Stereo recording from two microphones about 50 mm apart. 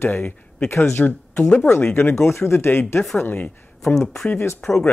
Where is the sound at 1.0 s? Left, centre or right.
Left.